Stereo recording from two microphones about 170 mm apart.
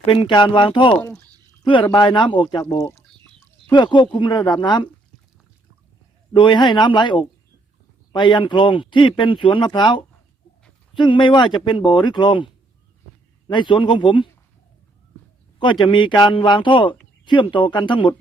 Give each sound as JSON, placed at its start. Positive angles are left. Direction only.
{"t": 0.0, "sound": "speech", "side_deg": 30}
{"t": 2.6, "sound": "speech", "side_deg": 15}
{"t": 3.7, "sound": "speech", "side_deg": 25}
{"t": 6.3, "sound": "speech", "side_deg": 25}
{"t": 13.5, "sound": "speech", "side_deg": 25}
{"t": 15.5, "sound": "speech", "side_deg": 30}